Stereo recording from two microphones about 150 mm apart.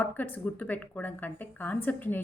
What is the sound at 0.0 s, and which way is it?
A woman's voice, 10° left (ahead or behind).